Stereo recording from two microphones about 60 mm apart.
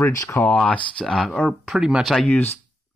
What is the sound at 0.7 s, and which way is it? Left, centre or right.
Speech, centre.